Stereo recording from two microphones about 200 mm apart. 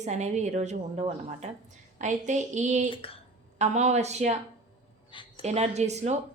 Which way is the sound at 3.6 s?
35° right (ahead or behind).